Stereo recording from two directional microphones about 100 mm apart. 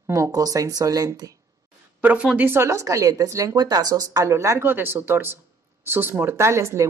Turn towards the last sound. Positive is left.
turn(degrees=-30)  # may be behind; listen again after turning